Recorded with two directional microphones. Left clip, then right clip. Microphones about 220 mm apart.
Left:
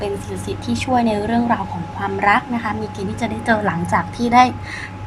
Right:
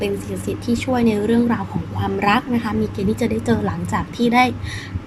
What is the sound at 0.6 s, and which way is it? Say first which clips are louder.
A woman's voice: left 2 dB; centre (ahead or behind).